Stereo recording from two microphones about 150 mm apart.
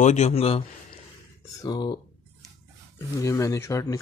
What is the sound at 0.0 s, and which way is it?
Speech, 50° left (ahead or behind).